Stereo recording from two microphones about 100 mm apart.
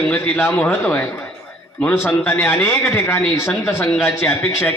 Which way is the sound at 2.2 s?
15° left (ahead or behind).